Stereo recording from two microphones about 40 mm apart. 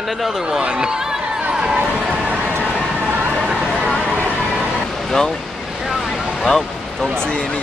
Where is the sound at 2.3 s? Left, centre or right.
Right.